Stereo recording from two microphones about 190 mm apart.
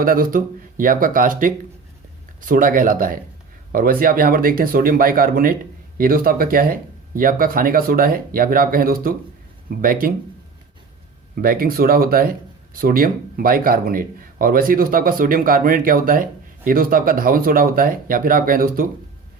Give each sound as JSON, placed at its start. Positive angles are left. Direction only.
{"t": 0.0, "sound": "speech", "side_deg": -50}
{"t": 11.4, "sound": "speech", "side_deg": -50}